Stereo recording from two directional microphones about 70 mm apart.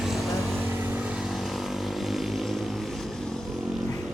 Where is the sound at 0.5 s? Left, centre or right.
Right.